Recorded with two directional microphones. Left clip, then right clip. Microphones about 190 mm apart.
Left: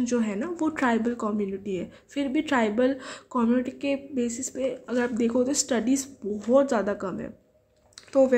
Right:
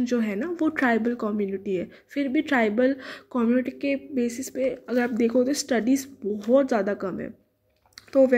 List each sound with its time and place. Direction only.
0.0 s speech: 15° right (ahead or behind)